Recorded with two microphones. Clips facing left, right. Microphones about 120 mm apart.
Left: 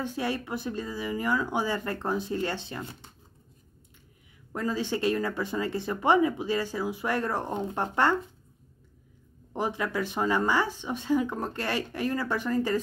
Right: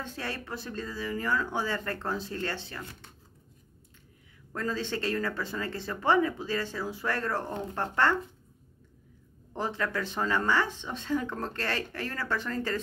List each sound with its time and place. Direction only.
0.0 s speech: 15° left (ahead or behind)
4.5 s speech: 15° left (ahead or behind)
9.5 s speech: 15° left (ahead or behind)